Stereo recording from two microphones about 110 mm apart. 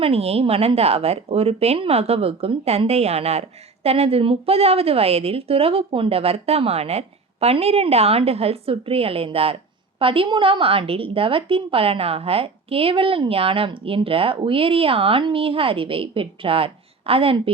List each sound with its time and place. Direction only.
0.0 s a woman's voice: 70° right (ahead or behind)